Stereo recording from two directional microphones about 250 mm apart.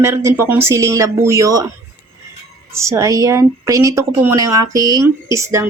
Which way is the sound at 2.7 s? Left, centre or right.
Centre.